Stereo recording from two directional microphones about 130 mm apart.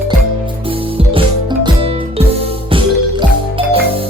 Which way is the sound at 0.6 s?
45° right (ahead or behind).